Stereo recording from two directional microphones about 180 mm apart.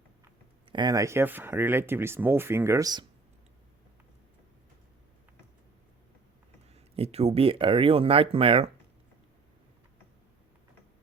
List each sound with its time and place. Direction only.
0.7 s speech: 25° right (ahead or behind)
6.7 s speech: 35° right (ahead or behind)